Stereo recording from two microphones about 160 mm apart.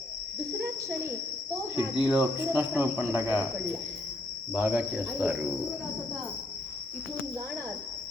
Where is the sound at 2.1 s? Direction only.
10° right (ahead or behind).